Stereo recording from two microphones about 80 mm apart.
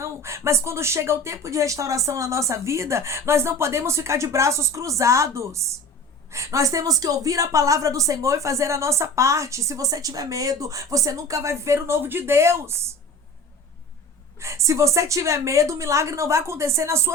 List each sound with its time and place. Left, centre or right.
0.0 s a woman's voice: right
14.3 s a woman's voice: right